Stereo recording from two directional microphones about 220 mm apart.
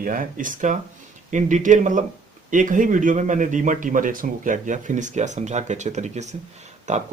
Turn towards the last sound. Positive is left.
turn(degrees=-30)  # may be behind; listen again after turning